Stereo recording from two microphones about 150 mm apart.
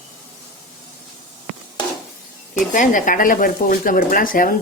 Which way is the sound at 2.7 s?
60° left (ahead or behind).